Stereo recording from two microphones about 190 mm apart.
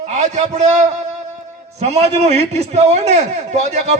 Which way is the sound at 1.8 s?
35° right (ahead or behind).